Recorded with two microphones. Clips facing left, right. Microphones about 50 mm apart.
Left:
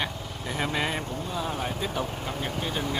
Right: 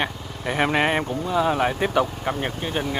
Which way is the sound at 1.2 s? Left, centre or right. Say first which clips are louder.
Right 12 dB; right.